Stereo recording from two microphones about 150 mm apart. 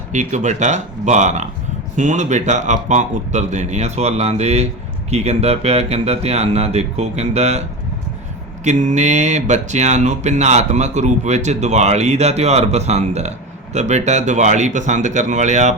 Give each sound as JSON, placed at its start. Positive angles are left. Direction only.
{"t": 0.1, "sound": "speech", "side_deg": -55}
{"t": 8.6, "sound": "speech", "side_deg": -55}